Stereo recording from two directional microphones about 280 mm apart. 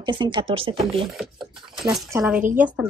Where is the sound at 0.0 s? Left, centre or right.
Centre.